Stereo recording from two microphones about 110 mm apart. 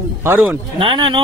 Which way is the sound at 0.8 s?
45° right (ahead or behind).